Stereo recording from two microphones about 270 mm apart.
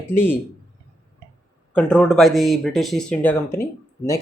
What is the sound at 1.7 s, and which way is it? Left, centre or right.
Speech, centre.